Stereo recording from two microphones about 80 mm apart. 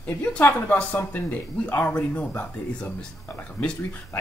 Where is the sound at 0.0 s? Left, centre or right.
Centre.